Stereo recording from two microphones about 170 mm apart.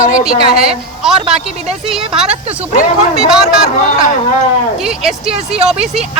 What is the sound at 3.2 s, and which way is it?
Speech, 5° right (ahead or behind).